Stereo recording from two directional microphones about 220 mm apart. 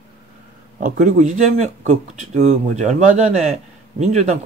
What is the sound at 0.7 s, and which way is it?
Speech, 35° right (ahead or behind).